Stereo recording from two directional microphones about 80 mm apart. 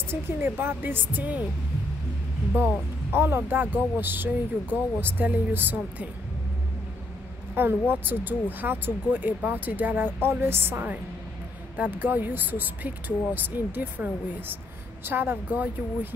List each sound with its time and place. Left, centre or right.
0.1 s speech: right
2.5 s speech: right
7.5 s speech: right
15.0 s speech: right